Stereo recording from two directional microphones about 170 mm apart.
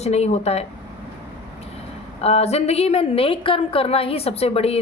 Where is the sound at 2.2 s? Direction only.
35° left (ahead or behind).